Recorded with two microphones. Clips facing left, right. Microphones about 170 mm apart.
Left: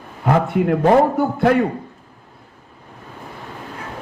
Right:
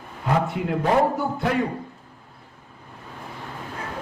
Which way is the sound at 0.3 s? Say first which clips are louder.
Left 7 dB; 55° left (ahead or behind).